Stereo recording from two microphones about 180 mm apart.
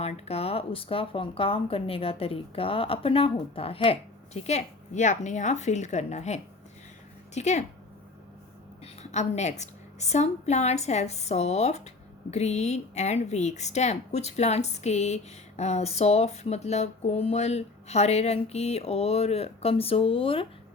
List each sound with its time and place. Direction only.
0.0 s speech: 35° left (ahead or behind)
8.8 s a woman's voice: 40° left (ahead or behind)